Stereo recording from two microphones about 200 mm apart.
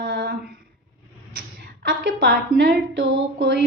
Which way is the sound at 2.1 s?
65° right (ahead or behind).